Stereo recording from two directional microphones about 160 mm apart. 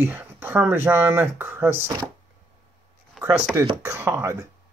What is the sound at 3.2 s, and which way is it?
Speech, 15° right (ahead or behind).